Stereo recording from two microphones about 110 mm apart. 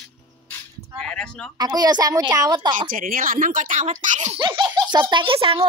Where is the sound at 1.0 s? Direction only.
10° left (ahead or behind).